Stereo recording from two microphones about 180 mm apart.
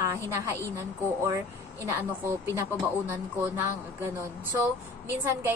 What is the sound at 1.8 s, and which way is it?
Speech, 15° right (ahead or behind).